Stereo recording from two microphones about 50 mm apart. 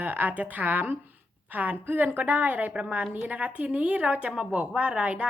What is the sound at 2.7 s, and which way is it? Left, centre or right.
A woman's voice, right.